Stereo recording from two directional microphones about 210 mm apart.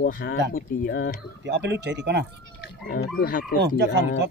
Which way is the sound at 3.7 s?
55° right (ahead or behind).